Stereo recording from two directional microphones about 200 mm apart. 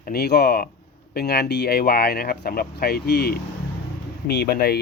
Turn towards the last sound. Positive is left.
turn(degrees=50)  # may be behind; listen again after turning